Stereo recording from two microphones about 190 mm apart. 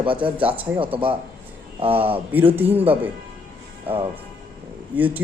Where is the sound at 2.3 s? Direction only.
10° right (ahead or behind).